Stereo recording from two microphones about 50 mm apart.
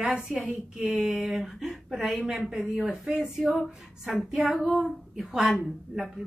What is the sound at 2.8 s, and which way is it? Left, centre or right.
Speech, right.